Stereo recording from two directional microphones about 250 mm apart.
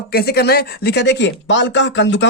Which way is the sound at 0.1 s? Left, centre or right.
Left.